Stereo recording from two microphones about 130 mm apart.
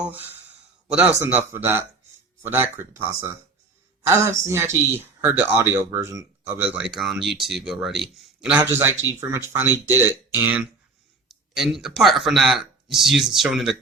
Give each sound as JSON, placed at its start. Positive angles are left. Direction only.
{"t": 0.0, "sound": "speech", "side_deg": -15}
{"t": 6.6, "sound": "speech", "side_deg": -10}
{"t": 8.7, "sound": "speech", "side_deg": -15}
{"t": 11.3, "sound": "speech", "side_deg": 0}